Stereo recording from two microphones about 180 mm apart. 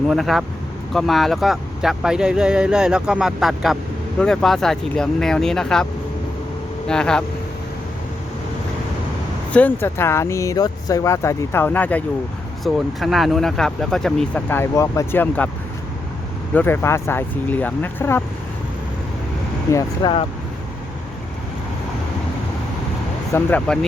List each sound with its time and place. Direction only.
0.1 s speech: centre (ahead or behind)
9.5 s speech: 10° left (ahead or behind)
16.6 s speech: 10° left (ahead or behind)
19.7 s speech: 25° left (ahead or behind)
23.3 s speech: 10° left (ahead or behind)